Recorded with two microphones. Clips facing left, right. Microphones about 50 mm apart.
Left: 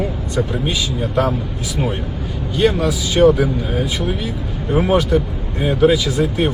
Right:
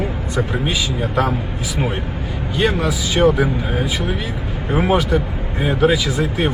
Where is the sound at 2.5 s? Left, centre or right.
Right.